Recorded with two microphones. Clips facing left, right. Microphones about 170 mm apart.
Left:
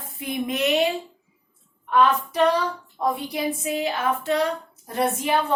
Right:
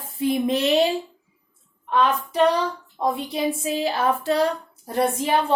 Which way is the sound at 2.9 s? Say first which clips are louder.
Right 1 dB; 25° right (ahead or behind).